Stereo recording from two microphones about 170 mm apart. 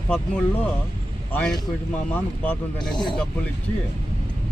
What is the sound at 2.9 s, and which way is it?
Speech, 25° left (ahead or behind).